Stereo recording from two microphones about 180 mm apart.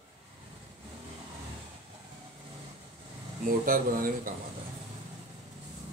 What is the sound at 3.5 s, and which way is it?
Speech, 50° right (ahead or behind).